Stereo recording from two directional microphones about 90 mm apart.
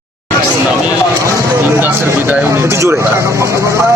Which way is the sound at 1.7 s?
20° right (ahead or behind).